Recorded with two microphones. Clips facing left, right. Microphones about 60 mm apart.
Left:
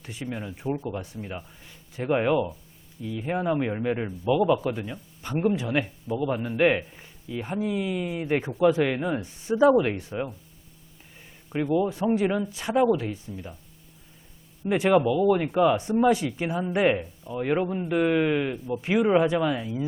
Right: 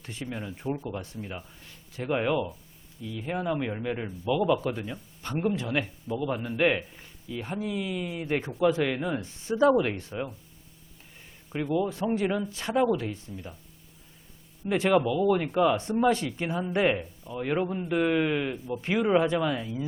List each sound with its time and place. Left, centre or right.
0.0 s speech: centre
9.2 s speech: left
11.2 s a sound: centre
11.7 s speech: centre
14.7 s speech: centre